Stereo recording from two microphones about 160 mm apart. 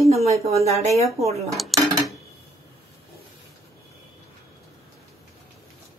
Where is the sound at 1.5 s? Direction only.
Centre (ahead or behind).